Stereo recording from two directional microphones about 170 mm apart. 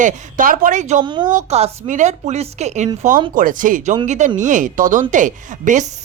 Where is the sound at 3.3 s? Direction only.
55° right (ahead or behind).